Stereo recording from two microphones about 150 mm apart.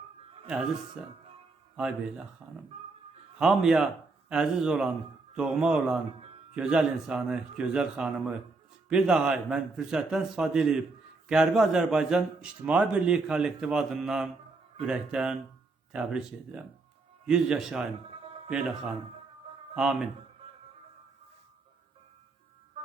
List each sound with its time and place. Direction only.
1.7 s a man's voice: 5° right (ahead or behind)
3.3 s a man's voice: 5° right (ahead or behind)
18.2 s music: 40° right (ahead or behind)
19.7 s a man's voice: 5° right (ahead or behind)